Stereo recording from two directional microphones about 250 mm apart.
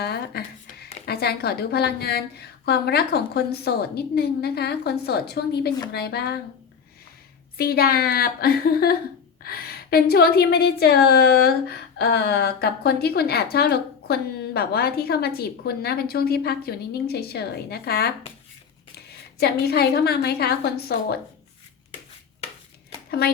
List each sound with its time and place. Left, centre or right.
0.0 s a sound: left
1.0 s a woman's voice: left
7.6 s a woman's voice: left
19.4 s a woman's voice: left